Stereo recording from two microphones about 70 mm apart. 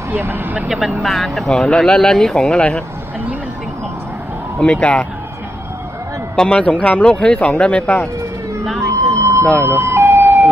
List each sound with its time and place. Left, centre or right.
0.1 s speech: right
0.7 s speech: centre
4.6 s a man's voice: centre
6.3 s a man's voice: centre
9.0 s vehicle: right
9.8 s ambulance: right